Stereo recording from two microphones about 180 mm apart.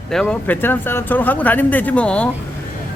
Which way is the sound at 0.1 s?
5° left (ahead or behind).